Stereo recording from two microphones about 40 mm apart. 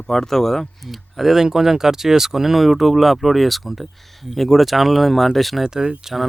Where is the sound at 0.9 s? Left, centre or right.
Centre.